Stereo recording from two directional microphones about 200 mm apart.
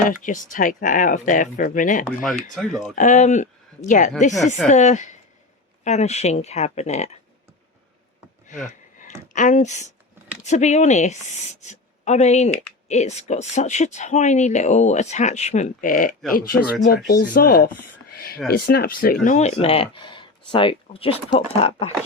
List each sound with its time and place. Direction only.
0.1 s speech: 40° left (ahead or behind)
2.0 s speech: centre (ahead or behind)
2.9 s speech: 40° left (ahead or behind)
8.4 s a sound: 40° left (ahead or behind)
9.3 s speech: 40° left (ahead or behind)